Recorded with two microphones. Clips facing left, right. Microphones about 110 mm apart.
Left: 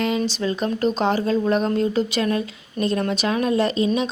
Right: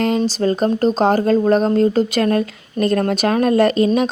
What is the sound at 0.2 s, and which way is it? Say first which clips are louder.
Speech: right 6 dB; 40° right (ahead or behind).